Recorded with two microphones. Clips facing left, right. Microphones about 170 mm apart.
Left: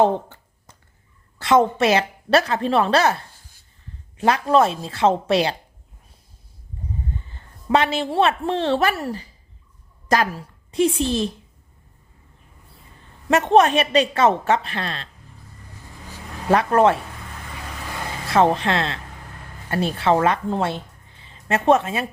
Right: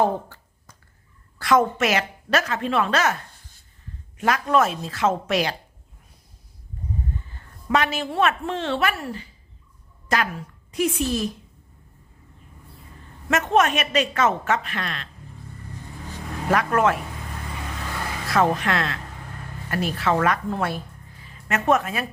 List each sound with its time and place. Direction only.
0.0 s a sound: 25° left (ahead or behind)
1.4 s a woman's voice: 25° left (ahead or behind)
7.7 s a woman's voice: 30° left (ahead or behind)
13.2 s a woman's voice: 30° left (ahead or behind)
16.5 s a woman's voice: 30° left (ahead or behind)
18.3 s a woman's voice: 30° left (ahead or behind)